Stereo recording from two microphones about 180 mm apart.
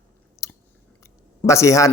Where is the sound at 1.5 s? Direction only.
15° left (ahead or behind).